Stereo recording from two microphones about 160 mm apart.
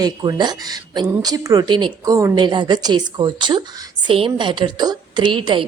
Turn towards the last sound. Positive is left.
turn(degrees=-30)  # may be behind; listen again after turning